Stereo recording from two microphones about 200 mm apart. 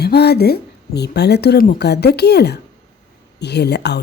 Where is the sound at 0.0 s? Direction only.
55° left (ahead or behind).